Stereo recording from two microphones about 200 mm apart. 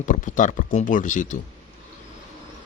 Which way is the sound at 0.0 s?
40° left (ahead or behind).